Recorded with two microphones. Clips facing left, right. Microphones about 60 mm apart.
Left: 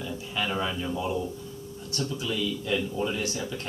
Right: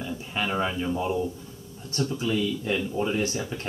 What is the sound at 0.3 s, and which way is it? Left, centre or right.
Speech, right.